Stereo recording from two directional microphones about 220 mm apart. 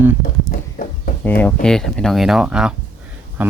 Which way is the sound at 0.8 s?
40° left (ahead or behind).